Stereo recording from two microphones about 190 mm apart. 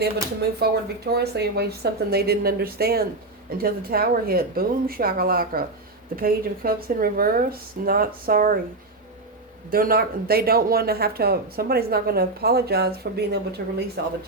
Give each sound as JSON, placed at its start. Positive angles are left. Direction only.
{"t": 0.6, "sound": "speech", "side_deg": -55}
{"t": 9.6, "sound": "speech", "side_deg": -50}